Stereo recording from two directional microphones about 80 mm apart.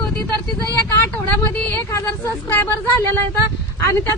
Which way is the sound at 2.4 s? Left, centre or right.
Left.